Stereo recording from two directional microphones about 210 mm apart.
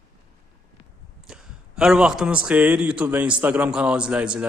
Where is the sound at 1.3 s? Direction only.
Centre (ahead or behind).